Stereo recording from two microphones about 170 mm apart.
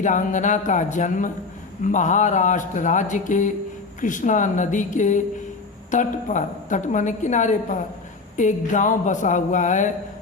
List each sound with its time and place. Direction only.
0.0 s a woman's voice: 45° left (ahead or behind)